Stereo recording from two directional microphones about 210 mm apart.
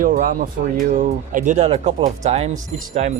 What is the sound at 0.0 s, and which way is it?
Speech, 40° right (ahead or behind).